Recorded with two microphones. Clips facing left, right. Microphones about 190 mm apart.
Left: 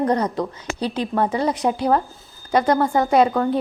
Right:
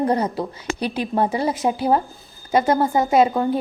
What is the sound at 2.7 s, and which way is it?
Speech, 20° right (ahead or behind).